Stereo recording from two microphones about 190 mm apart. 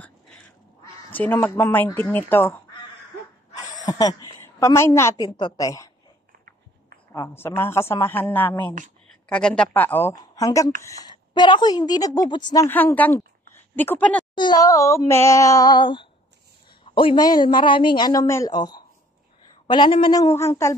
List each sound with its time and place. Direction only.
1.1 s speech: 10° left (ahead or behind)
3.5 s a sound: 20° left (ahead or behind)
5.1 s a man's voice: 20° left (ahead or behind)
7.1 s a man's voice: 10° left (ahead or behind)
12.6 s speech: 10° left (ahead or behind)
14.3 s a man's voice: 25° left (ahead or behind)